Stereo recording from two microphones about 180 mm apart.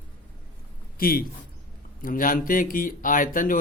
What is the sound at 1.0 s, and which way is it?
A man's voice, 55° left (ahead or behind).